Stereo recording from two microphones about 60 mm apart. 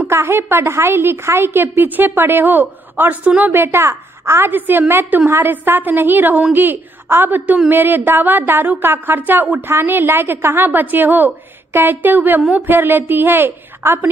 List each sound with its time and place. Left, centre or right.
0.1 s speech: right
3.5 s a woman's voice: right
4.5 s a woman's voice: right